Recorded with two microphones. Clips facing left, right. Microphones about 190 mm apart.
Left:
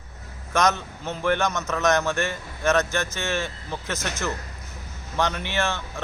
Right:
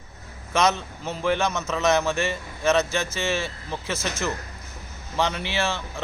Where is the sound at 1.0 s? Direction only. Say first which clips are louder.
Even; 15° right (ahead or behind).